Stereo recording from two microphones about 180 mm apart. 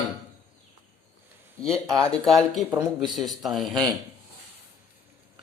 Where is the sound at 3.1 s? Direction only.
Centre (ahead or behind).